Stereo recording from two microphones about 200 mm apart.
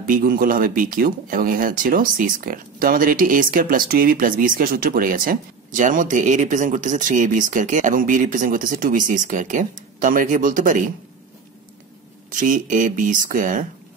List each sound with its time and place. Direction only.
0.0 s speech: 45° right (ahead or behind)
12.3 s speech: 40° right (ahead or behind)